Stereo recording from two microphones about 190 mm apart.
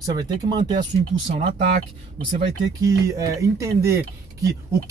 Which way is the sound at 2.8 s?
15° right (ahead or behind).